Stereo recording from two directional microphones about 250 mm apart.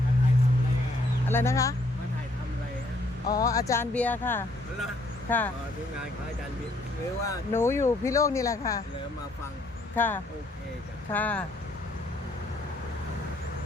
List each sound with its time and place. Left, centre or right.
1.3 s speech: centre
3.3 s speech: centre
7.3 s speech: centre
9.9 s speech: centre